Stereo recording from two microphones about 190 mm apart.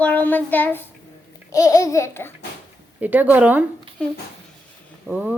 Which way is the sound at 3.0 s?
10° right (ahead or behind).